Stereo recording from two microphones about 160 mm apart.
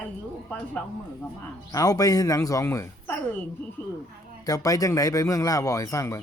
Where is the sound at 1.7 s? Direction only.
20° left (ahead or behind).